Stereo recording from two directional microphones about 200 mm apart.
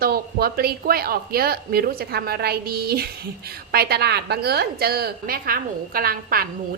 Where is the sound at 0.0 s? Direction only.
50° right (ahead or behind).